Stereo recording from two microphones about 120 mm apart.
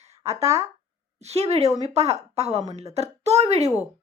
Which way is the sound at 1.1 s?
65° right (ahead or behind).